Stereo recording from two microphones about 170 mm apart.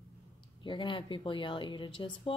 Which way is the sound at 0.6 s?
30° left (ahead or behind).